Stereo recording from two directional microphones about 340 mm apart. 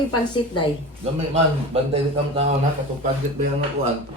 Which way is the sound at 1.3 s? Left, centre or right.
Centre.